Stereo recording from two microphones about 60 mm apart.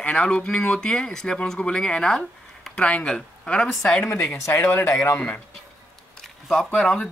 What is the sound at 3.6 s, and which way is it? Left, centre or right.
Speech, centre.